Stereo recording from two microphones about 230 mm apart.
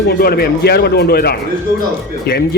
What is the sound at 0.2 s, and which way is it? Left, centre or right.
A man's voice, left.